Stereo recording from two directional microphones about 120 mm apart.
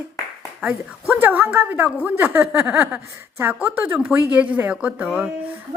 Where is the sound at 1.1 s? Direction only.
15° right (ahead or behind).